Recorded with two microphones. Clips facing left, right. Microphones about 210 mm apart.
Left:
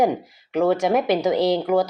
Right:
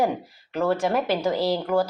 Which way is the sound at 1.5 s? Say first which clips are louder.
Left 3 dB; 15° left (ahead or behind).